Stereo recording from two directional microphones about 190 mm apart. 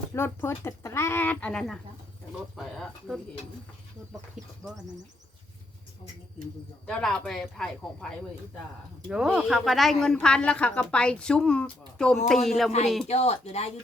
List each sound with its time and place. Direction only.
0.1 s speech: 15° left (ahead or behind)
4.6 s speech: 5° left (ahead or behind)
6.8 s speech: 5° left (ahead or behind)
13.1 s speech: 35° left (ahead or behind)